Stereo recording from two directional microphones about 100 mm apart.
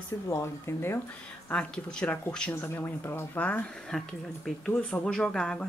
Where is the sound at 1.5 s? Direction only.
10° left (ahead or behind).